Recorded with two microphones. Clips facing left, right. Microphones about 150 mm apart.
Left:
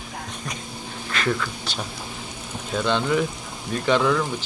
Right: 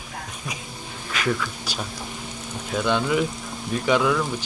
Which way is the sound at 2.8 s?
10° right (ahead or behind).